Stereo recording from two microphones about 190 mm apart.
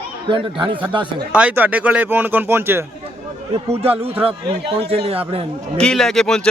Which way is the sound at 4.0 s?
30° right (ahead or behind).